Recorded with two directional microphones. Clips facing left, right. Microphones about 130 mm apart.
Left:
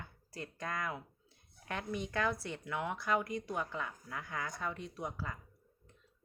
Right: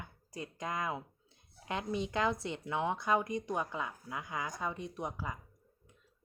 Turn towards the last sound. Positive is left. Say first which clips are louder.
# right 2 dB
turn(degrees=-15)  # may be behind; listen again after turning